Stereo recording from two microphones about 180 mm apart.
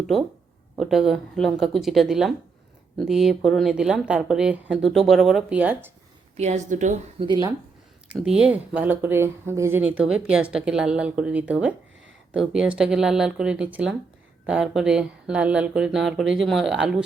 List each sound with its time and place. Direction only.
0.8 s speech: centre (ahead or behind)
6.3 s a woman's voice: 40° right (ahead or behind)
7.3 s speech: 25° right (ahead or behind)
8.1 s speech: 5° right (ahead or behind)